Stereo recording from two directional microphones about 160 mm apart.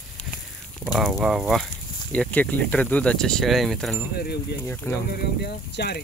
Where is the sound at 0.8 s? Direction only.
Centre (ahead or behind).